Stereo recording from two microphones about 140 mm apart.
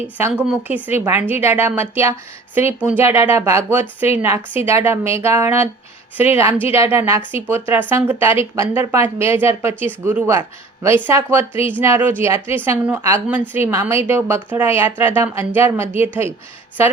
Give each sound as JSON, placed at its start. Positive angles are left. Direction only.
{"t": 0.2, "sound": "speech", "side_deg": -15}